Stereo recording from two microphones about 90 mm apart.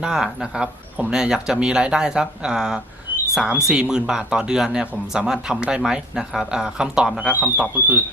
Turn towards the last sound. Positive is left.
turn(degrees=-15)  # may be behind; listen again after turning